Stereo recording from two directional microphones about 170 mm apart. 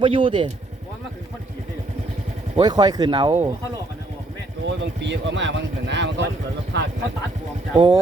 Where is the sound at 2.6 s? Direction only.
25° right (ahead or behind).